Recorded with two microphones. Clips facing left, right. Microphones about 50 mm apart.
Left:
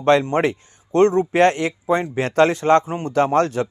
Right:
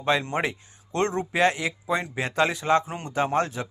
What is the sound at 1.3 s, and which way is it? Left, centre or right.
Speech, left.